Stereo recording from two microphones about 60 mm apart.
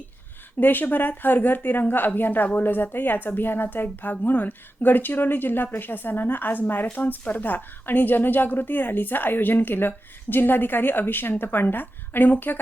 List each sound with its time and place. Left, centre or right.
0.6 s a woman's voice: left